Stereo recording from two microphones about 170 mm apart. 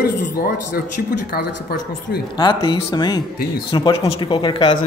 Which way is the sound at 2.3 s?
25° left (ahead or behind).